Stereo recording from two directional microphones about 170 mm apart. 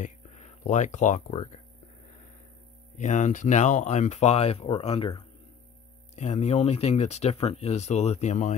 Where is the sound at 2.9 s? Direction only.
45° left (ahead or behind).